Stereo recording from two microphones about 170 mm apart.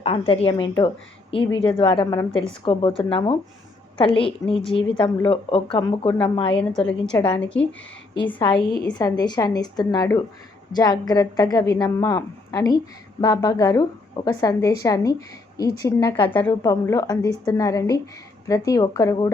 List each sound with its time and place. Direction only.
0.0 s a woman's voice: 35° left (ahead or behind)
6.6 s a woman's voice: 5° left (ahead or behind)
8.9 s a woman's voice: 25° left (ahead or behind)